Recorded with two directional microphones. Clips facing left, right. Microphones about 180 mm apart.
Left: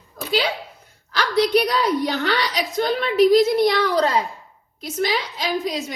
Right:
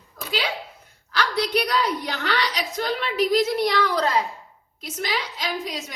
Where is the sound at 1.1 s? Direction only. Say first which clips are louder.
Left 5 dB; 30° left (ahead or behind).